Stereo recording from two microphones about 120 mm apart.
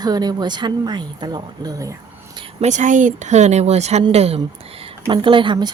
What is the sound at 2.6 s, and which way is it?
Speech, 85° right.